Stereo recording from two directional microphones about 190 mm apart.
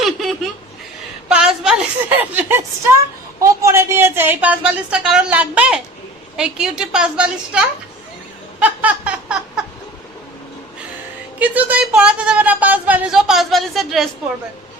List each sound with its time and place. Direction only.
1.3 s a woman's voice: 5° right (ahead or behind)
8.5 s a sound: 5° right (ahead or behind)
11.3 s speech: 10° right (ahead or behind)